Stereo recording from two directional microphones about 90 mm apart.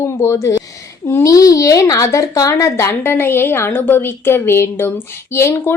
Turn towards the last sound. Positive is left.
turn(degrees=30)  # may be behind; listen again after turning